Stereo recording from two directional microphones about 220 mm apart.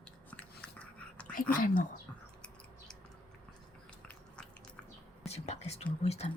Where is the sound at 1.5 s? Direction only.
40° left (ahead or behind).